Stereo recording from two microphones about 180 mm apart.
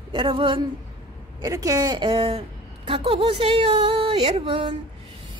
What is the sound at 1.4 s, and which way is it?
A woman's voice, 20° right (ahead or behind).